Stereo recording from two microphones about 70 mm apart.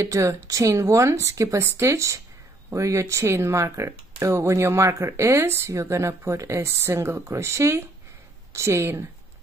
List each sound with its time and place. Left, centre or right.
0.0 s speech: right